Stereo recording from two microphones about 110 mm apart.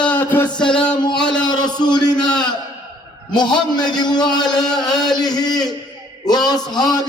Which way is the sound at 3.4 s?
40° left (ahead or behind).